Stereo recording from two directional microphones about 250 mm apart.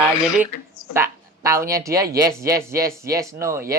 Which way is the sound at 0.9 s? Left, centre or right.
Centre.